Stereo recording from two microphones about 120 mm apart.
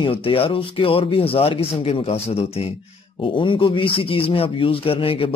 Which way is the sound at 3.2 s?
45° left (ahead or behind).